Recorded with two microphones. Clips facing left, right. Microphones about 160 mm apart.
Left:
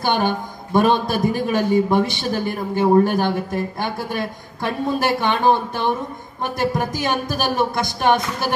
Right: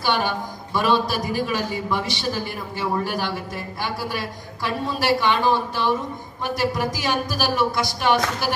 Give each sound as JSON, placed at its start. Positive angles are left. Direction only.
{"t": 0.0, "sound": "a man's voice", "side_deg": 50}